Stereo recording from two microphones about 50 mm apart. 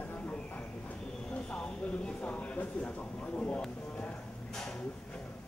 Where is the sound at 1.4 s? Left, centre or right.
Centre.